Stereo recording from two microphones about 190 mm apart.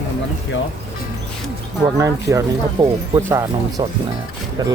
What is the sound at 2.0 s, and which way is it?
Speech, 15° right (ahead or behind).